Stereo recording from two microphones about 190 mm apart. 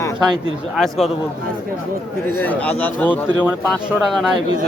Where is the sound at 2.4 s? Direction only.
5° left (ahead or behind).